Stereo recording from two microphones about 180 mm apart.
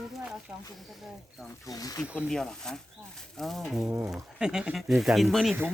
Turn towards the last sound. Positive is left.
turn(degrees=0)  # may be behind; listen again after turning